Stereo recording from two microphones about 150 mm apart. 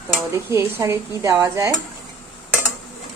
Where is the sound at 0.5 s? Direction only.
20° right (ahead or behind).